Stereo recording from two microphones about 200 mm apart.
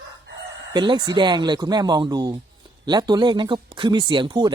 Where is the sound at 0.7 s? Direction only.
20° right (ahead or behind).